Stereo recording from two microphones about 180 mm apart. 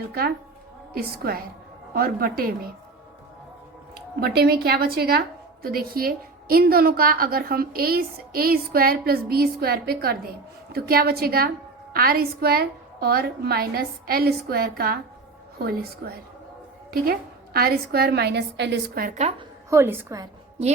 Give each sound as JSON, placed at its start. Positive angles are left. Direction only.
{"t": 0.1, "sound": "a woman's voice", "side_deg": -60}
{"t": 4.2, "sound": "a woman's voice", "side_deg": -60}
{"t": 19.7, "sound": "a woman's voice", "side_deg": -10}